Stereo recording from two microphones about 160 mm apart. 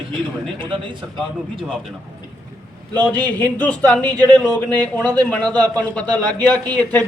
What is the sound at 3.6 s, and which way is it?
A man's voice, 10° left (ahead or behind).